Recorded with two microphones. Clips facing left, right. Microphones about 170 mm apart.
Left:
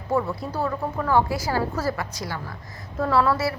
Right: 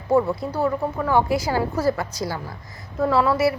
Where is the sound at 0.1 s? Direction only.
20° right (ahead or behind).